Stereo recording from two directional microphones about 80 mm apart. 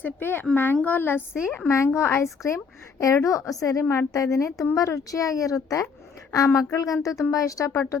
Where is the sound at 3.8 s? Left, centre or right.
Left.